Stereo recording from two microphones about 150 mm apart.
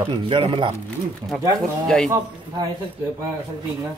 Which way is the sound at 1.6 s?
5° left (ahead or behind).